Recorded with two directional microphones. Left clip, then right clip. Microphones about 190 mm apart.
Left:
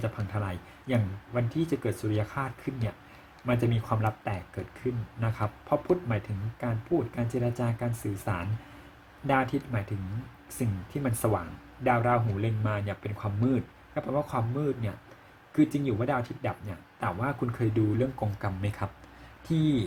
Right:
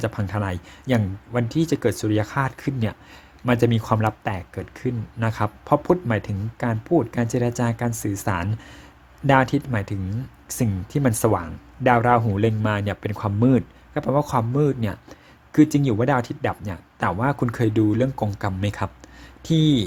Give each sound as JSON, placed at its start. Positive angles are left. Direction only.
{"t": 0.0, "sound": "speech", "side_deg": -45}
{"t": 7.2, "sound": "speech", "side_deg": -45}